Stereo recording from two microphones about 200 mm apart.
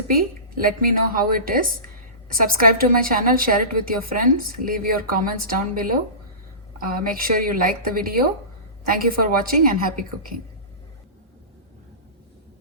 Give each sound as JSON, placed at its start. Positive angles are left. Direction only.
{"t": 0.1, "sound": "a woman's voice", "side_deg": -45}